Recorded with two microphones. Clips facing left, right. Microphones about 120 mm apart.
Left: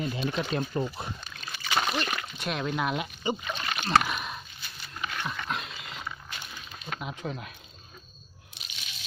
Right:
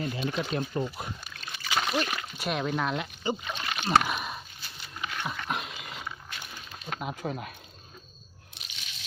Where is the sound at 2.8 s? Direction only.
15° left (ahead or behind).